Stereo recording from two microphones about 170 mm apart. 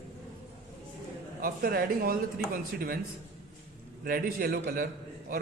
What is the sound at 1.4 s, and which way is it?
Speech, 60° right (ahead or behind).